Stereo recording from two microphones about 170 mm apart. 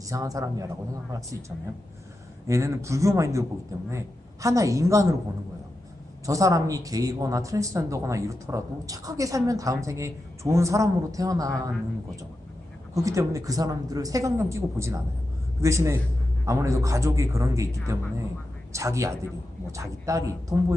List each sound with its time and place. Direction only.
0.1 s speech: 20° right (ahead or behind)
2.5 s a man's voice: 15° right (ahead or behind)
6.2 s speech: 20° right (ahead or behind)
12.9 s a man's voice: 20° right (ahead or behind)